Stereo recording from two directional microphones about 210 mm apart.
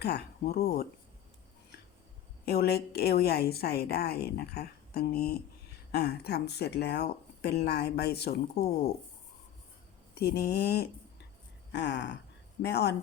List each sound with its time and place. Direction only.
0.0 s a woman's voice: 50° left (ahead or behind)
2.5 s a woman's voice: 50° left (ahead or behind)
10.2 s a woman's voice: 50° left (ahead or behind)